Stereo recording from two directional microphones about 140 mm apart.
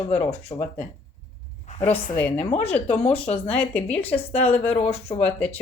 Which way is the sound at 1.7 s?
60° left (ahead or behind).